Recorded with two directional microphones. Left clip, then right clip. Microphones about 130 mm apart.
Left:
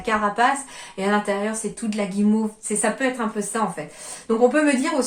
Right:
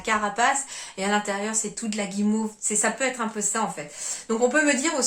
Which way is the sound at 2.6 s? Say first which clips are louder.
Left 1 dB; 15° right (ahead or behind).